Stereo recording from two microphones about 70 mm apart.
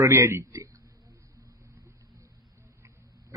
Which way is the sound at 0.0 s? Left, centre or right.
Right.